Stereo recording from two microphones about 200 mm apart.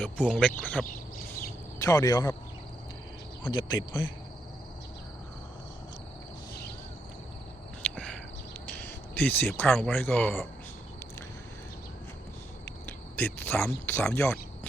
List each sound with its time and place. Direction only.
0.0 s speech: 5° left (ahead or behind)
3.5 s speech: 20° left (ahead or behind)
7.8 s a sound: 5° left (ahead or behind)
8.8 s speech: 10° left (ahead or behind)
12.8 s speech: 10° left (ahead or behind)